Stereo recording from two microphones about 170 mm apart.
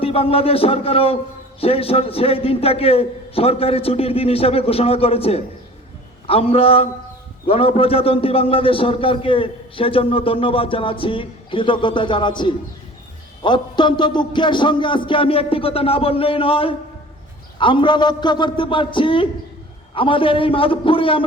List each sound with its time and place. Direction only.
0.0 s a man's voice: 35° left (ahead or behind)